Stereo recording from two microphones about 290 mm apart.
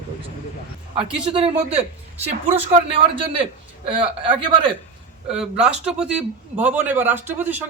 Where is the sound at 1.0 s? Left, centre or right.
Centre.